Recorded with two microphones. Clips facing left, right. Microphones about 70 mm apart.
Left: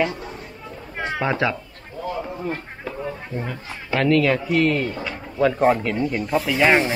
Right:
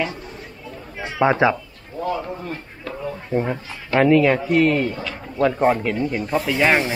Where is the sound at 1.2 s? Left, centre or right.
Right.